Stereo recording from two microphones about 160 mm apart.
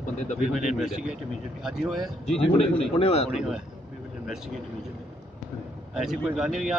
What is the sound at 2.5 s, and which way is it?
Speech, 40° left (ahead or behind).